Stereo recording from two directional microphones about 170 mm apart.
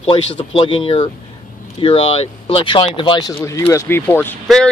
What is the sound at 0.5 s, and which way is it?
Speech, 30° left (ahead or behind).